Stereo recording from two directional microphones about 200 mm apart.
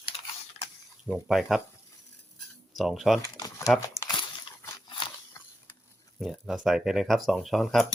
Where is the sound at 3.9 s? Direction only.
20° left (ahead or behind).